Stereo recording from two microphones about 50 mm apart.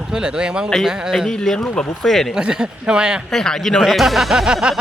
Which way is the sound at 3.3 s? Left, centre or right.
Centre.